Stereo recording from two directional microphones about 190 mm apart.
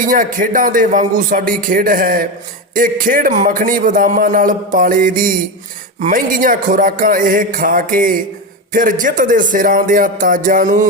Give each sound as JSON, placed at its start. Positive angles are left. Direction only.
{"t": 0.0, "sound": "a man's voice", "side_deg": -45}